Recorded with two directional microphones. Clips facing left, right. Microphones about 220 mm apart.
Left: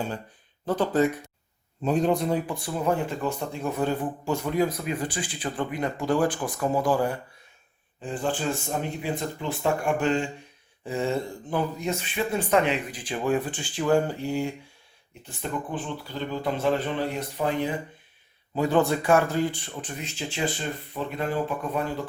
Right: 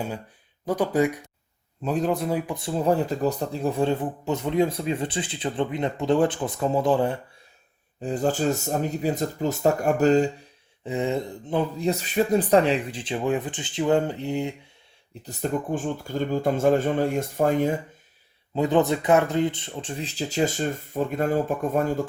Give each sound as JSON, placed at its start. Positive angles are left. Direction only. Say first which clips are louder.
{"t": 0.6, "sound": "speech", "louder": "right 1 dB", "side_deg": -10}
{"t": 1.8, "sound": "a man's voice", "louder": "left 1 dB", "side_deg": 0}
{"t": 2.5, "sound": "speech", "louder": "right 3 dB", "side_deg": -25}
{"t": 8.0, "sound": "speech", "louder": "right 5 dB", "side_deg": -40}
{"t": 10.8, "sound": "speech", "louder": "right 1 dB", "side_deg": -20}
{"t": 11.9, "sound": "speech", "louder": "right 6 dB", "side_deg": -40}
{"t": 15.2, "sound": "speech", "louder": "right 5 dB", "side_deg": -40}
{"t": 18.5, "sound": "speech", "louder": "right 2 dB", "side_deg": -20}